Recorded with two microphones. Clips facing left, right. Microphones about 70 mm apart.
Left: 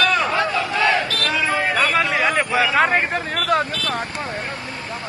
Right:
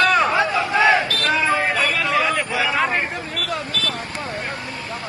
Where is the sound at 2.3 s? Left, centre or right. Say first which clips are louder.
Left 2 dB; left.